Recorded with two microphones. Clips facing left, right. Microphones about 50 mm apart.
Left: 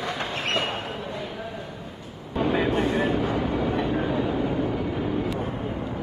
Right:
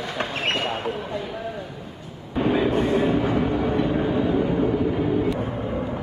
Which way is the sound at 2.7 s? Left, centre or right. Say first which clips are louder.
Right 3 dB; left.